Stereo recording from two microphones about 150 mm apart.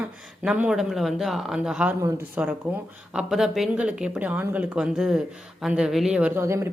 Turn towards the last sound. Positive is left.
turn(degrees=-20)  # may be behind; listen again after turning